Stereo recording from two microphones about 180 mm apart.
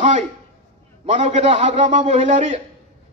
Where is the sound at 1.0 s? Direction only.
40° right (ahead or behind).